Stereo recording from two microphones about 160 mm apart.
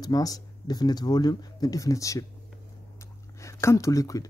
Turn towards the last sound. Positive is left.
turn(degrees=20)  # may be behind; listen again after turning